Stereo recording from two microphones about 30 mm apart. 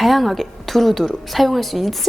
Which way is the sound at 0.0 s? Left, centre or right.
Centre.